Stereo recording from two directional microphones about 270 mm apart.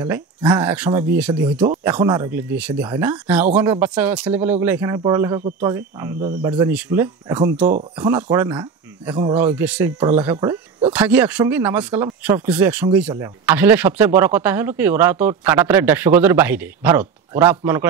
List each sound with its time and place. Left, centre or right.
0.0 s speech: centre